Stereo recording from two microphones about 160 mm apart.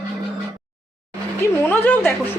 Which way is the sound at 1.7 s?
10° left (ahead or behind).